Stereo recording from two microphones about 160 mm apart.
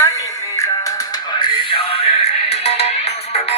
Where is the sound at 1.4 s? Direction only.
35° left (ahead or behind).